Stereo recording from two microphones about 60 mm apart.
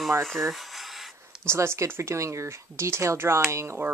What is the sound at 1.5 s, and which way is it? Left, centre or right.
Speech, right.